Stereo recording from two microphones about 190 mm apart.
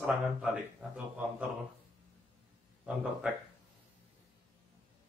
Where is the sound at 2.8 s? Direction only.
5° right (ahead or behind).